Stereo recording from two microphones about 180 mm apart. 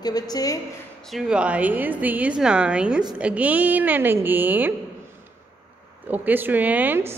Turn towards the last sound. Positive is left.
turn(degrees=-10)  # may be behind; listen again after turning